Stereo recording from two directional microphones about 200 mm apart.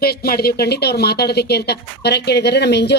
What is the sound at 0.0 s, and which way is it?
Speech, 50° left (ahead or behind).